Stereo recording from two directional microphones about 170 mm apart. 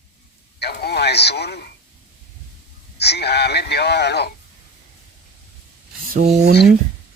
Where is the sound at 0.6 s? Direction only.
70° left (ahead or behind).